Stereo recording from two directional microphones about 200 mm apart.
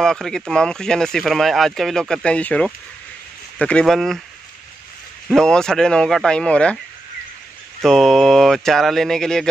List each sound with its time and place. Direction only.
0.0 s speech: centre (ahead or behind)
5.3 s speech: 5° left (ahead or behind)
7.8 s speech: centre (ahead or behind)